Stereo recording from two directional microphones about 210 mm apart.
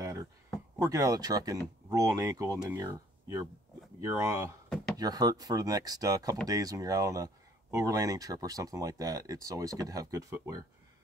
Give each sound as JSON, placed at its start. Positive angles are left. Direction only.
{"t": 0.7, "sound": "speech", "side_deg": -15}